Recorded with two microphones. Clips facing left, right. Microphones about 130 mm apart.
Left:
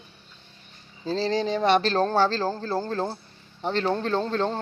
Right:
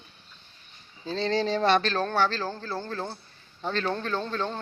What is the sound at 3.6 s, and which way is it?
Speech, 25° left (ahead or behind).